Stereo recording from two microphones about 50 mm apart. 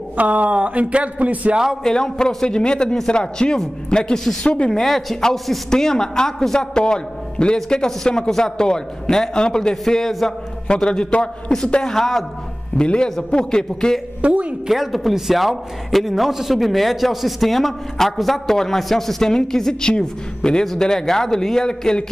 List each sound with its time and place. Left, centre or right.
0.2 s speech: right
1.8 s a man's voice: centre
11.8 s a man's voice: centre
12.7 s a man's voice: centre
14.2 s speech: right
14.7 s a man's voice: centre